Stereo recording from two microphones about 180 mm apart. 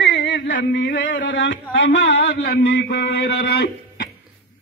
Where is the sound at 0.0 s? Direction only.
80° left.